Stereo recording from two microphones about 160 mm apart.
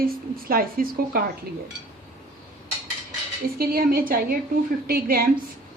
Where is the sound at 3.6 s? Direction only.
70° right (ahead or behind).